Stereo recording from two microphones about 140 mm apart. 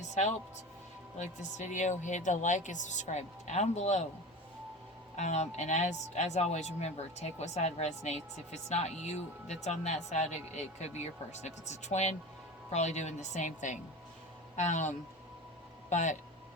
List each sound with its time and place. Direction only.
0.1 s speech: 55° left (ahead or behind)
5.1 s speech: 55° left (ahead or behind)